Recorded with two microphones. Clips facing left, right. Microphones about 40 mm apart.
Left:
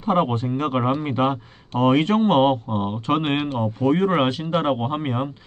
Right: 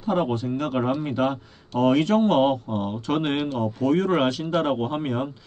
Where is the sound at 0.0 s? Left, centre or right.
Left.